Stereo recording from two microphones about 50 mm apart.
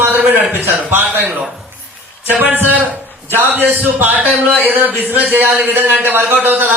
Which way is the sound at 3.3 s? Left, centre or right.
Right.